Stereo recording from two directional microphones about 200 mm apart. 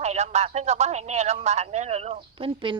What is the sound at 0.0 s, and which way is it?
Speech, 35° right (ahead or behind).